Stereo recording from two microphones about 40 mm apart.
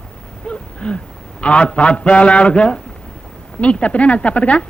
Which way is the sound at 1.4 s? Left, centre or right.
Left.